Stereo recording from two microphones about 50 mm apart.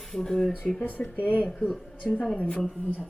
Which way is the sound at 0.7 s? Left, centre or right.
Left.